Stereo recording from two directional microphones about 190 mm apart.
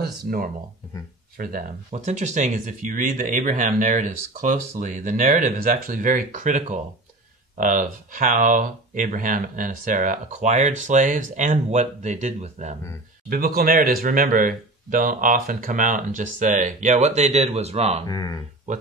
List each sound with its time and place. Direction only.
0.0 s a sound: 50° right (ahead or behind)
1.4 s speech: 50° right (ahead or behind)
1.9 s speech: 35° right (ahead or behind)
13.3 s speech: 50° right (ahead or behind); by 18.0 s 35° right (ahead or behind)
18.0 s speech: 20° left (ahead or behind)